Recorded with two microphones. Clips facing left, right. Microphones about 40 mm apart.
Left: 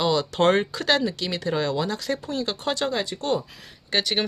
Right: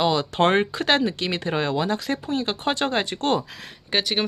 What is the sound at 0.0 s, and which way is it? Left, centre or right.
Speech, centre.